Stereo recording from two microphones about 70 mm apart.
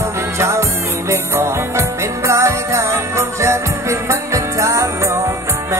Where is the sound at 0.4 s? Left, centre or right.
Right.